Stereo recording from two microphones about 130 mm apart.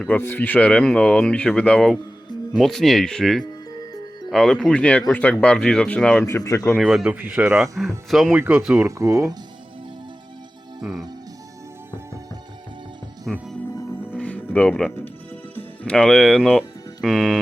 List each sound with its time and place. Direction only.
0.1 s speech: 15° left (ahead or behind)
6.2 s speech: 25° left (ahead or behind)
6.7 s a man's voice: centre (ahead or behind)
8.8 s speech: 25° right (ahead or behind)
10.8 s speech: 5° right (ahead or behind)
13.3 s speech: centre (ahead or behind)
14.1 s music: 10° left (ahead or behind)
15.5 s speech: 10° left (ahead or behind)